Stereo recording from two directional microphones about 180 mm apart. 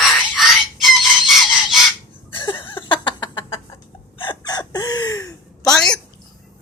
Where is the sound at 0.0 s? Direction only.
Centre (ahead or behind).